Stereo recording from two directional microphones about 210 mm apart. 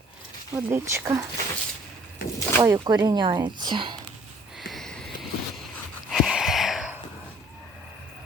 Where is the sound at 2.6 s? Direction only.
15° right (ahead or behind).